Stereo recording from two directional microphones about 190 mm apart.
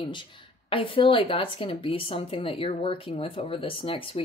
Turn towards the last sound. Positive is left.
turn(degrees=30)  # may be behind; listen again after turning